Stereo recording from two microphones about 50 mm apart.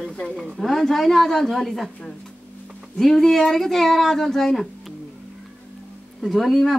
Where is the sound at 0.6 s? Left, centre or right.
Centre.